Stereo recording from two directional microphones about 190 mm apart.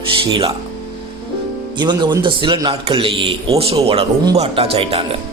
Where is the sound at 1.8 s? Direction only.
25° right (ahead or behind).